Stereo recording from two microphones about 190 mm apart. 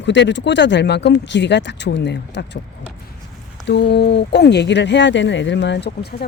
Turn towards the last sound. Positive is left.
turn(degrees=60)  # may be behind; listen again after turning